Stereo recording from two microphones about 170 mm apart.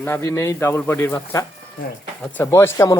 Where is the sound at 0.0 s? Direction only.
15° left (ahead or behind).